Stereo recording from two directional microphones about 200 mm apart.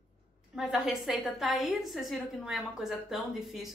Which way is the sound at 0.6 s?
Centre (ahead or behind).